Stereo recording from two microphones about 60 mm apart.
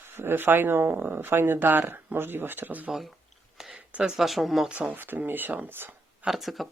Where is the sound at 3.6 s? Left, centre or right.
Centre.